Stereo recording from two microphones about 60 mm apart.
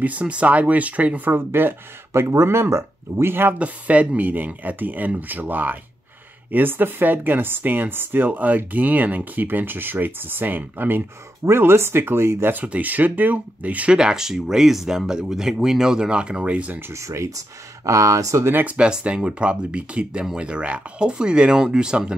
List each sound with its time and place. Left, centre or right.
0.0 s speech: right
3.5 s speech: right
11.4 s speech: right
12.6 s speech: right
13.9 s speech: centre
16.9 s speech: right
18.4 s speech: right
18.7 s speech: centre